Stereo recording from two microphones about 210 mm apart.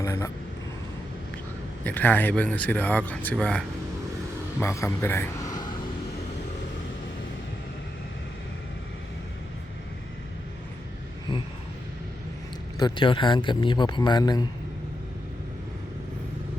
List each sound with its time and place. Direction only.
0.0 s vehicle: 15° left (ahead or behind)
1.8 s speech: 10° left (ahead or behind)
4.6 s a man's voice: 15° left (ahead or behind)
12.8 s speech: 25° left (ahead or behind)